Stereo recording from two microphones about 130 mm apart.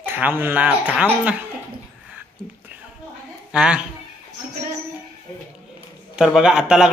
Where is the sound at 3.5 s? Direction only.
5° right (ahead or behind).